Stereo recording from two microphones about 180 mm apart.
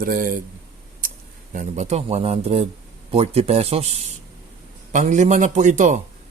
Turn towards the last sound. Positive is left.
turn(degrees=-45)  # may be behind; listen again after turning